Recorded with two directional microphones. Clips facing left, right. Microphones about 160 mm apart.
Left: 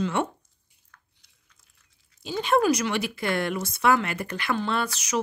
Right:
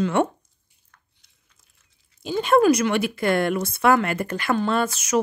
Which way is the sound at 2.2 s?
50° right (ahead or behind).